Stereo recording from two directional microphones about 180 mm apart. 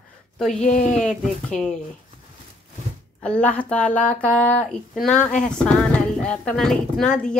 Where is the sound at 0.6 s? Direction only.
45° left (ahead or behind).